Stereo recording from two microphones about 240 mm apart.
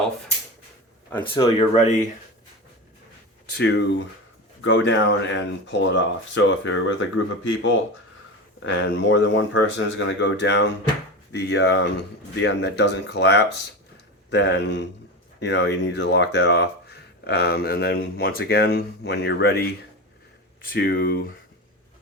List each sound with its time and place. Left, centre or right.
1.1 s speech: left
3.5 s speech: left